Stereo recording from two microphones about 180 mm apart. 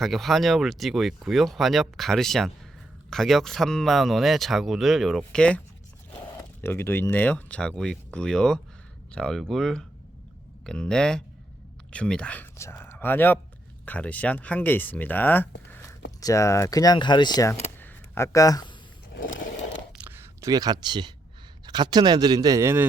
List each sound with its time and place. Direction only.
0.0 s speech: centre (ahead or behind); by 17.5 s 25° left (ahead or behind)
17.5 s a sound: 10° left (ahead or behind)
19.4 s scrape: 45° left (ahead or behind)
20.0 s camera: 10° right (ahead or behind)
21.7 s speech: 25° right (ahead or behind)